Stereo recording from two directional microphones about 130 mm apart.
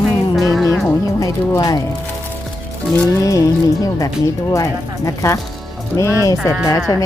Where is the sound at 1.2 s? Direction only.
30° left (ahead or behind).